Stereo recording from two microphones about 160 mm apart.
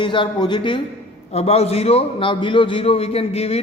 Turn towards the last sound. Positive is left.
turn(degrees=40)  # may be behind; listen again after turning